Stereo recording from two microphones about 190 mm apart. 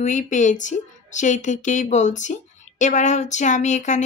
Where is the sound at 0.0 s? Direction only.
40° left (ahead or behind).